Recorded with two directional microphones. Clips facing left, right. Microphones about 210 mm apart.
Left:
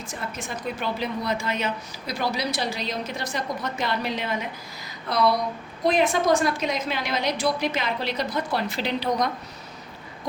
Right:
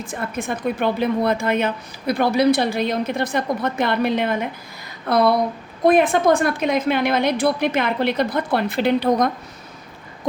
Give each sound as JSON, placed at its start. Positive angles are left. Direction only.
{"t": 0.0, "sound": "a woman's voice", "side_deg": -55}